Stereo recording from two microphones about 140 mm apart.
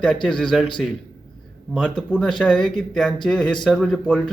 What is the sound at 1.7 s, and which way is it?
Speech, 5° left (ahead or behind).